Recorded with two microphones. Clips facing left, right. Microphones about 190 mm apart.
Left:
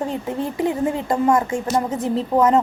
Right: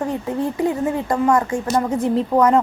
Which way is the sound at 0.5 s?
25° left (ahead or behind).